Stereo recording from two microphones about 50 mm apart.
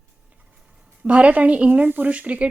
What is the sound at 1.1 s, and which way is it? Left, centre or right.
A woman's voice, right.